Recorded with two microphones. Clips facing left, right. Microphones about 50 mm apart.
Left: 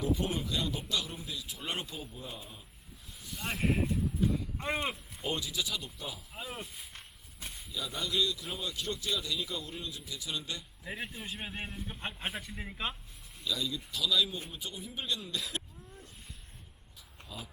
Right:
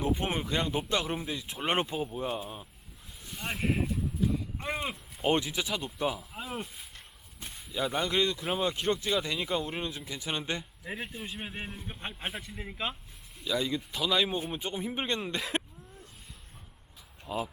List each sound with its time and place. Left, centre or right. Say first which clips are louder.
0.0 s speech: right 2 dB; right
3.3 s speech: right 1 dB; centre
5.2 s speech: right 7 dB; right
6.1 s speech: right 4 dB; centre
7.7 s speech: right 7 dB; right
10.8 s a man's voice: even; centre
12.3 s speech: right 1 dB; centre
13.4 s speech: right 5 dB; right
17.2 s speech: right 12 dB; right